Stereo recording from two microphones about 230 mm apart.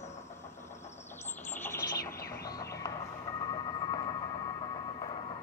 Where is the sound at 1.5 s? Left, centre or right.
Centre.